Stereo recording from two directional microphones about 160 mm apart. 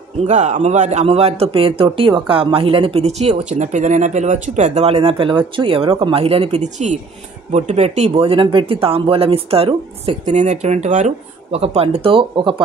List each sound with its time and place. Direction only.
0.3 s speech: 45° right (ahead or behind); by 12.6 s 30° right (ahead or behind)